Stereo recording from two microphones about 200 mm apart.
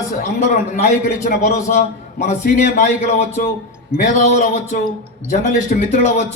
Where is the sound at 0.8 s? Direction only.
40° left (ahead or behind).